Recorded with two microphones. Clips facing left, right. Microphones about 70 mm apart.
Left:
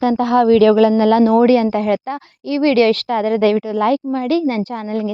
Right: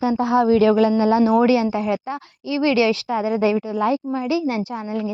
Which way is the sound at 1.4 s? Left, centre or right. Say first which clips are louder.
Left 4 dB; left.